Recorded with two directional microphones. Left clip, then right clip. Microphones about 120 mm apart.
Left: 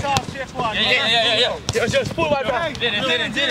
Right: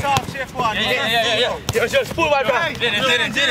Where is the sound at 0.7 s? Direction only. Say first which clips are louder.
Left 3 dB; 10° left (ahead or behind).